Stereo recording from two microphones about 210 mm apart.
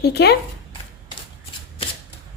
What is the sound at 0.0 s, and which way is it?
Speech, 50° left (ahead or behind).